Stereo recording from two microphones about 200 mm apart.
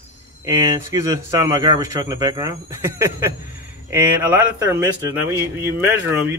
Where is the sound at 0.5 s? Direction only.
20° right (ahead or behind).